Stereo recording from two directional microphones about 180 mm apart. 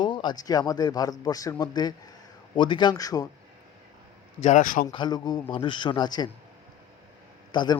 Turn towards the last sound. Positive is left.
turn(degrees=25)  # may be behind; listen again after turning